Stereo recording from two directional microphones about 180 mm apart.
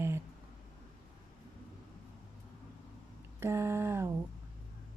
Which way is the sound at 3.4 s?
15° right (ahead or behind).